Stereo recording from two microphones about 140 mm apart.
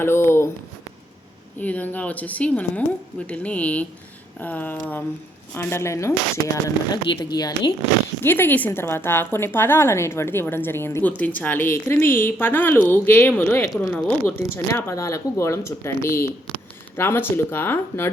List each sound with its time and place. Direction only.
0.0 s a woman's voice: 15° left (ahead or behind)
1.5 s a woman's voice: 10° left (ahead or behind)
6.9 s speech: 30° left (ahead or behind)
8.2 s a woman's voice: 15° left (ahead or behind)